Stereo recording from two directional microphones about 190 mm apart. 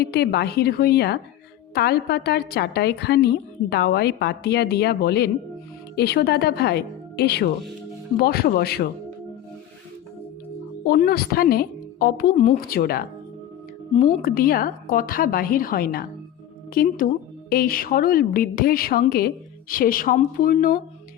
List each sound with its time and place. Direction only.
0.0 s a woman's voice: 55° left (ahead or behind)
10.8 s a woman's voice: 50° left (ahead or behind)
13.9 s a woman's voice: 40° left (ahead or behind)